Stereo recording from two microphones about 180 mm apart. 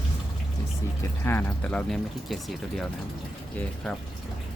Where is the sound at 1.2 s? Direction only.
10° left (ahead or behind).